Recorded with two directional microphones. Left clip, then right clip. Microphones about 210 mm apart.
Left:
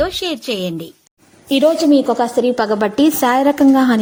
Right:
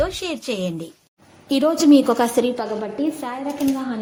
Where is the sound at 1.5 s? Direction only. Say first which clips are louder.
Left 3 dB; centre (ahead or behind).